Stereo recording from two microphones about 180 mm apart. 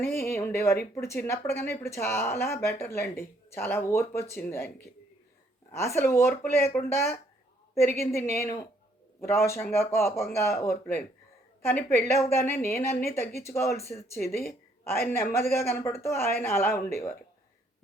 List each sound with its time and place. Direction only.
0.2 s speech: 15° left (ahead or behind)
5.7 s speech: 15° left (ahead or behind)
12.0 s speech: 15° left (ahead or behind)